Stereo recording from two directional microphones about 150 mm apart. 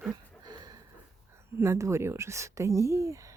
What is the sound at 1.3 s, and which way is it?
Speech, 15° right (ahead or behind).